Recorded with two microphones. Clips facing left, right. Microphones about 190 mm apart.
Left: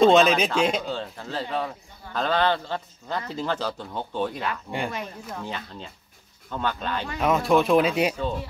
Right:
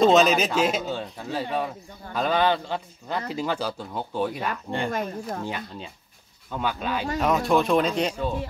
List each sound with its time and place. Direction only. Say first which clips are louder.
0.0 s a man's voice: left 1 dB; centre (ahead or behind)
4.6 s speech: right 2 dB; 10° left (ahead or behind)
4.9 s speech: right 5 dB; 45° right (ahead or behind)
6.5 s a man's voice: right 1 dB; 10° right (ahead or behind); by 8.2 s 10° left (ahead or behind)